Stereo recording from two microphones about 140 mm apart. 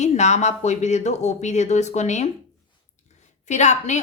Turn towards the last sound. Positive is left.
turn(degrees=55)  # may be behind; listen again after turning